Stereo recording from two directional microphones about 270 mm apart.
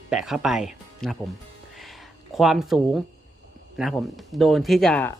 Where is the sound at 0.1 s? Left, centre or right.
Centre.